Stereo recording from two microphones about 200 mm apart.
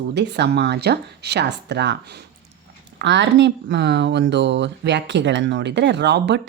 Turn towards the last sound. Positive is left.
turn(degrees=-60)  # may be behind; listen again after turning